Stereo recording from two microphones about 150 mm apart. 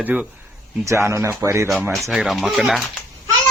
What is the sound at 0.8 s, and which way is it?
Speech, 20° right (ahead or behind).